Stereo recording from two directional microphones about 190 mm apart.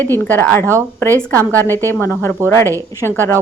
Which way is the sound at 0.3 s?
10° left (ahead or behind).